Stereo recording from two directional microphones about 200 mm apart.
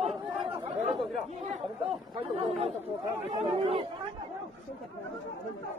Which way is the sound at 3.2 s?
30° right (ahead or behind).